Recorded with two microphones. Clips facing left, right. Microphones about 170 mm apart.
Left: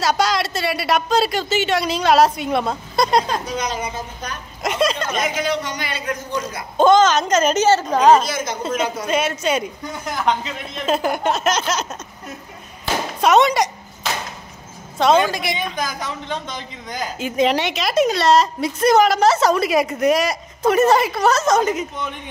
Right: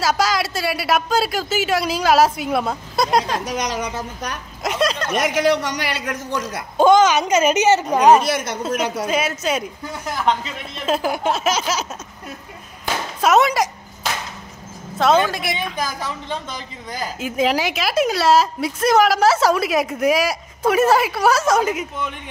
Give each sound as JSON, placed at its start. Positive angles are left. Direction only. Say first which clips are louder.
{"t": 0.0, "sound": "a man's voice", "louder": "left 1 dB", "side_deg": -5}
{"t": 3.4, "sound": "a man's voice", "louder": "right 1 dB", "side_deg": -75}
{"t": 4.6, "sound": "a man's voice", "louder": "left 1 dB", "side_deg": 0}
{"t": 5.1, "sound": "a man's voice", "louder": "right 4 dB", "side_deg": -70}
{"t": 6.8, "sound": "speech", "louder": "even", "side_deg": -10}
{"t": 8.2, "sound": "a man's voice", "louder": "right 2 dB", "side_deg": -70}
{"t": 9.0, "sound": "a man's voice", "louder": "left 1 dB", "side_deg": -5}
{"t": 13.2, "sound": "a man's voice", "louder": "left 1 dB", "side_deg": -5}
{"t": 15.0, "sound": "a man's voice", "louder": "left 1 dB", "side_deg": 0}